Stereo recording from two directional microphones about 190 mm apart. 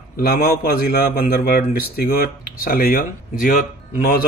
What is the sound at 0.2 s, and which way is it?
Speech, 55° left (ahead or behind).